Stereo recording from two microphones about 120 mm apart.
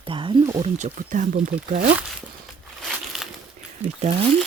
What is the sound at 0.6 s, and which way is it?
Speech, 65° right (ahead or behind).